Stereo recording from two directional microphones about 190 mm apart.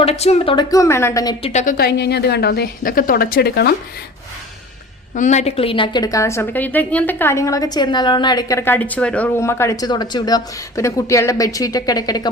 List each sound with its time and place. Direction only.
0.0 s speech: 35° left (ahead or behind)
0.7 s a woman's voice: 15° left (ahead or behind); by 3.8 s 55° left (ahead or behind)
5.1 s a woman's voice: 40° left (ahead or behind); by 12.3 s 20° left (ahead or behind)